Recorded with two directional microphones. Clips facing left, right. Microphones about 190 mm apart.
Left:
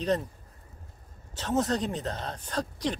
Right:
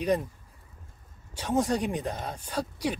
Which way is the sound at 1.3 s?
10° right (ahead or behind).